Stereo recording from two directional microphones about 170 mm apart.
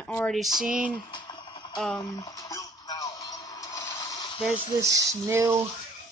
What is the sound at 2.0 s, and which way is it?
Music, 20° left (ahead or behind).